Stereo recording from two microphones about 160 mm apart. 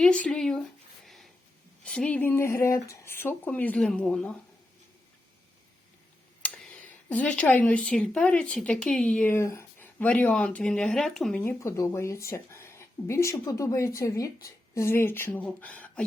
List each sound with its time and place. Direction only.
0.0 s speech: 5° left (ahead or behind)
1.0 s a sound: centre (ahead or behind)
1.8 s speech: 5° left (ahead or behind)
6.4 s speech: 5° left (ahead or behind)
11.6 s speech: 20° left (ahead or behind)